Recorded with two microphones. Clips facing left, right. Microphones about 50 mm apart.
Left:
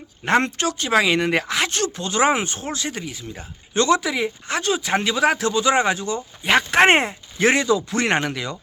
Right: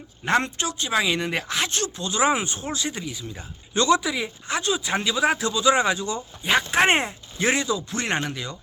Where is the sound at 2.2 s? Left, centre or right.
Left.